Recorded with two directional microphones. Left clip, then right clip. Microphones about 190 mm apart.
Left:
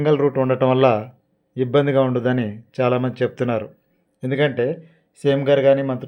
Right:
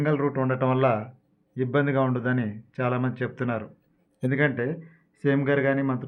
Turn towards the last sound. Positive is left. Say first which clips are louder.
# left 9 dB
turn(degrees=30)  # may be behind; listen again after turning